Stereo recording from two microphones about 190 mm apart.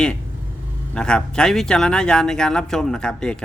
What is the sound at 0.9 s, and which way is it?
Speech, 5° left (ahead or behind).